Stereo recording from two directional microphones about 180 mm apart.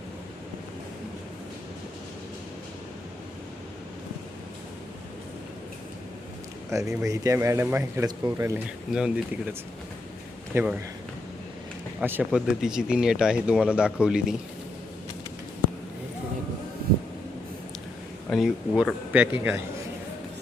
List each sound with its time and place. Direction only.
6.7 s speech: 15° right (ahead or behind)
8.9 s speech: 5° right (ahead or behind)
11.9 s speech: 10° right (ahead or behind)
18.3 s speech: 5° right (ahead or behind)